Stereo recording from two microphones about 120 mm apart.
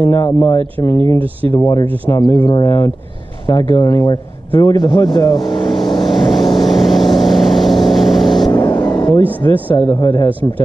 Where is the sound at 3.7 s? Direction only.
35° left (ahead or behind).